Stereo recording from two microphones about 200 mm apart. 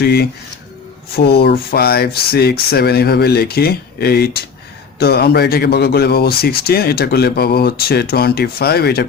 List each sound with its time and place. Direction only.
0.0 s speech: 55° left (ahead or behind)